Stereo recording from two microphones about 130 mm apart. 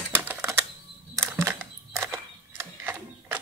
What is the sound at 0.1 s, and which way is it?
Typewriter, 15° right (ahead or behind).